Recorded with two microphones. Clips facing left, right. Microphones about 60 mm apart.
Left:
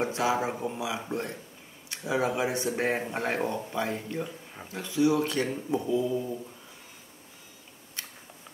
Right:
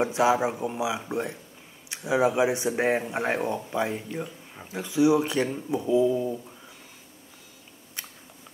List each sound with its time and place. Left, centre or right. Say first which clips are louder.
0.0 s speech: right 5 dB; centre